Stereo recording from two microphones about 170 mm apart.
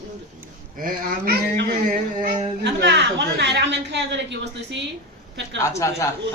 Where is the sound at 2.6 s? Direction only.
90° right.